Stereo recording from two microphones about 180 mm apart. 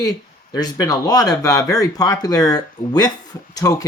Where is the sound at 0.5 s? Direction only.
20° left (ahead or behind).